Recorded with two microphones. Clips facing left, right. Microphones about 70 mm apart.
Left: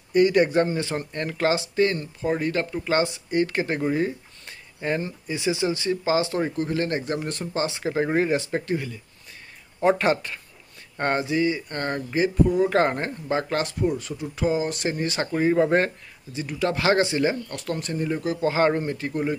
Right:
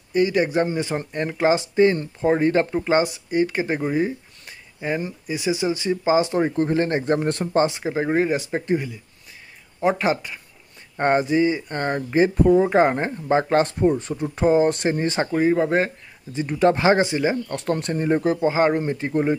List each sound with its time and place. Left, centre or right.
0.1 s speech: centre
0.7 s speech: centre
3.3 s speech: centre; by 7.2 s right
7.7 s speech: centre
9.8 s speech: centre
11.0 s speech: right
12.2 s speech: right
12.6 s speech: centre; by 14.1 s right
14.1 s speech: right
15.0 s speech: right
15.3 s speech: centre
16.3 s speech: right
17.5 s speech: right
18.4 s speech: centre